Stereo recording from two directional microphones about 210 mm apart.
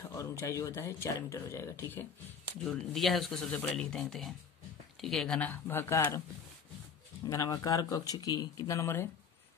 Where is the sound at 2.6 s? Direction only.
Centre (ahead or behind).